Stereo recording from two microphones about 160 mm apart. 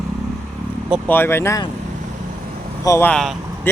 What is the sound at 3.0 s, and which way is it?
Speech, 5° left (ahead or behind).